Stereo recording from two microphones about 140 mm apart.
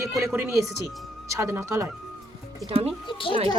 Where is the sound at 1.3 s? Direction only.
20° right (ahead or behind).